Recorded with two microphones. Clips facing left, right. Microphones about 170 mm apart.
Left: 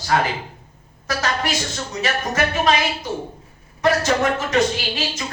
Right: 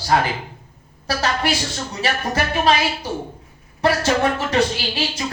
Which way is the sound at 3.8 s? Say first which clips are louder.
Even; 30° right (ahead or behind).